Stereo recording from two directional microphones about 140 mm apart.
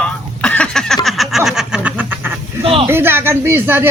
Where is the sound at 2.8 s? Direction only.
15° right (ahead or behind).